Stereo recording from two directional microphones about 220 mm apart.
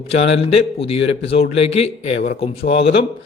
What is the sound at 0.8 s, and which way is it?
A man's voice, 25° left (ahead or behind).